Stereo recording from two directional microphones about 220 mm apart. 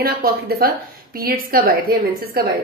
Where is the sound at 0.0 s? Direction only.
45° right (ahead or behind).